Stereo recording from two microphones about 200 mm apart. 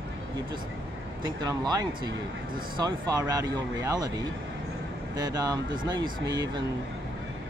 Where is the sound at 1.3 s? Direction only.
20° right (ahead or behind).